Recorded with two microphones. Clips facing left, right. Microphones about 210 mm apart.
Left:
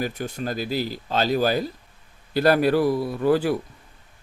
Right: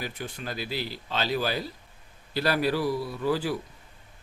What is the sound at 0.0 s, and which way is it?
Speech, 40° left (ahead or behind).